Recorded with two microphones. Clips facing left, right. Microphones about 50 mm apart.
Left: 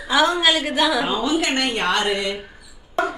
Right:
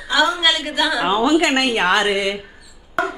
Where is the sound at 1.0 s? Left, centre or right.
Centre.